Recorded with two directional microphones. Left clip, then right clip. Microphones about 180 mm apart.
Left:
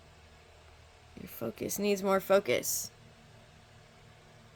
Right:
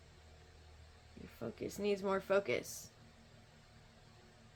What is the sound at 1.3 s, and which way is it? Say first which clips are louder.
Speech: left 7 dB; 35° left (ahead or behind).